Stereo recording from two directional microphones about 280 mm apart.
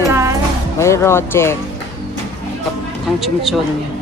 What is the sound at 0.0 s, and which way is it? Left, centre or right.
Music, centre.